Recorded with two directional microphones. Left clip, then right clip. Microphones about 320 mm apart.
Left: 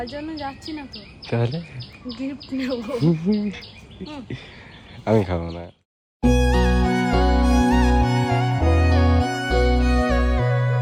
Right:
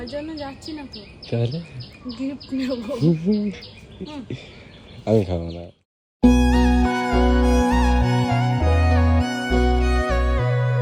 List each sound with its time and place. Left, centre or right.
0.4 s speech: centre
6.2 s music: centre